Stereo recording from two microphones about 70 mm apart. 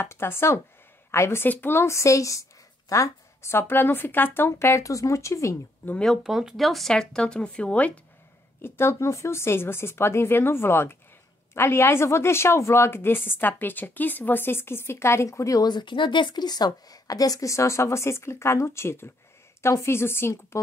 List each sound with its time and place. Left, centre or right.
0.0 s a woman's voice: left
2.9 s a sound: left
3.5 s a woman's voice: left
6.2 s speech: centre
8.6 s a woman's voice: left
15.6 s a woman's voice: left